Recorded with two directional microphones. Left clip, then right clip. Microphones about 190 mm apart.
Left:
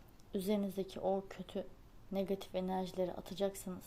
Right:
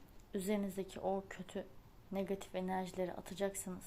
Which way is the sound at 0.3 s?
15° left (ahead or behind).